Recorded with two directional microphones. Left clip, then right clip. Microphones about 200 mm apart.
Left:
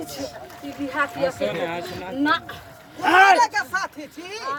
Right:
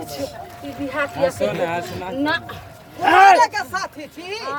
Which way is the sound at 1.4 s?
30° right (ahead or behind).